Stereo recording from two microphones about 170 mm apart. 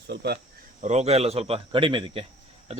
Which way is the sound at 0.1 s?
80° right.